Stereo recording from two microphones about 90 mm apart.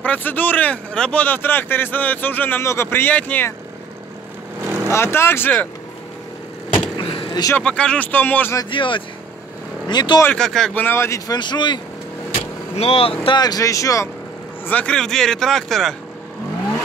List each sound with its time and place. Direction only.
0.0 s speech: 20° left (ahead or behind)
2.6 s speech: 30° left (ahead or behind); by 3.4 s 15° left (ahead or behind)
4.8 s speech: 30° left (ahead or behind)
6.7 s vehicle: 80° left
7.5 s speech: 10° left (ahead or behind)
8.6 s speech: 65° left (ahead or behind)
9.8 s speech: 55° left (ahead or behind)
10.3 s speech: 5° left (ahead or behind)
10.7 s speech: 20° left (ahead or behind)
11.3 s speech: 55° left (ahead or behind)
12.8 s speech: 90° left
13.4 s speech: 45° left (ahead or behind)
14.7 s speech: 15° left (ahead or behind)